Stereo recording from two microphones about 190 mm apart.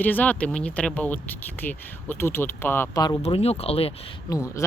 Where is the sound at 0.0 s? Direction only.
10° left (ahead or behind).